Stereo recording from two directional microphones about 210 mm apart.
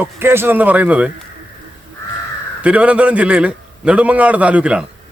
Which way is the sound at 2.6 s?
5° right (ahead or behind).